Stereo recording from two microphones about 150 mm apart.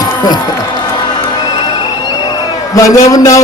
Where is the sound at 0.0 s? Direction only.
25° left (ahead or behind).